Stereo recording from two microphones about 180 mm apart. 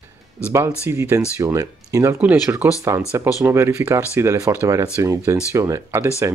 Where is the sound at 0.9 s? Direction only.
15° right (ahead or behind).